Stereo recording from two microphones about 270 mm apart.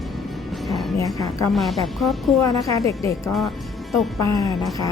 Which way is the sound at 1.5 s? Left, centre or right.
Centre.